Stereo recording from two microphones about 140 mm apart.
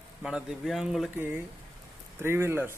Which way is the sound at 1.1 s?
15° right (ahead or behind).